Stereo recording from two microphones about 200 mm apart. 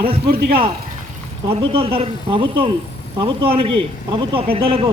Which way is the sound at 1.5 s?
25° right (ahead or behind).